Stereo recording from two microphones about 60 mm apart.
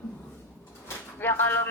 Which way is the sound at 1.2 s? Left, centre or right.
Left.